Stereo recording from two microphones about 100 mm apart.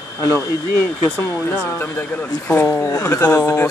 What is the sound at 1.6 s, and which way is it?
Speech, 20° left (ahead or behind).